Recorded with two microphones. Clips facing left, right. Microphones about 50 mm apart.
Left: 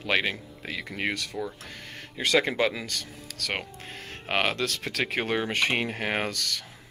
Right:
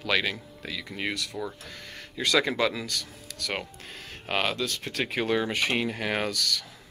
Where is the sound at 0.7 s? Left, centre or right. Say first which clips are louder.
Left 2 dB; left.